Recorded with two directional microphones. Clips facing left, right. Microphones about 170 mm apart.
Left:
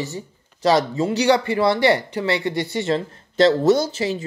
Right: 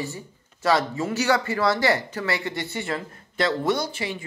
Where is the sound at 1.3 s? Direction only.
25° left (ahead or behind).